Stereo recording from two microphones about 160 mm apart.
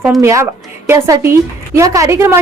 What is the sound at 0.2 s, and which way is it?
A woman's voice, 20° right (ahead or behind).